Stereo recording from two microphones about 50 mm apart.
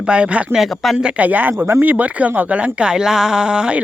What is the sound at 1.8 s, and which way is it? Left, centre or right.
Speech, right.